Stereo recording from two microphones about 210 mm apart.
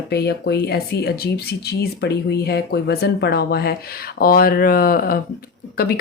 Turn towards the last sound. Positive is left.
turn(degrees=45)  # may be behind; listen again after turning